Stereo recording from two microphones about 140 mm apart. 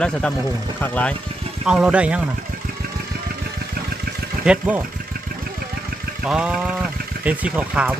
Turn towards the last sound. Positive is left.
turn(degrees=-10)  # may be behind; listen again after turning